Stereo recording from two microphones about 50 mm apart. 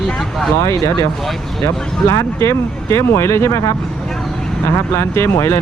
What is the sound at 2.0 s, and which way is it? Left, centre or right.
Speech, left.